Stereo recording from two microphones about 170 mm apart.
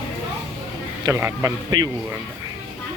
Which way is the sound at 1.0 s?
15° right (ahead or behind).